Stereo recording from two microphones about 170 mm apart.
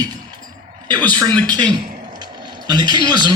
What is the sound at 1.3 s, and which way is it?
Speech, 10° left (ahead or behind).